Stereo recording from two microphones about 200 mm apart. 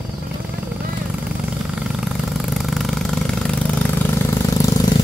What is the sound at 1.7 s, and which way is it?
Vehicle, centre (ahead or behind).